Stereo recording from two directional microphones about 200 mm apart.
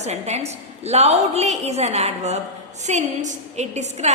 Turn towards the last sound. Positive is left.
turn(degrees=-35)  # may be behind; listen again after turning